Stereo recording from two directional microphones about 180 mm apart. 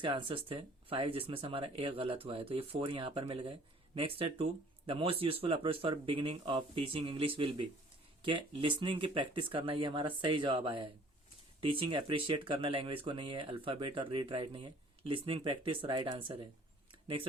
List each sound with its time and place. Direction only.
0.0 s speech: 25° right (ahead or behind)